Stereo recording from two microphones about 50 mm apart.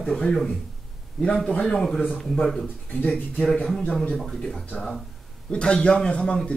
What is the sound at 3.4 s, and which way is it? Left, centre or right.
Speech, centre.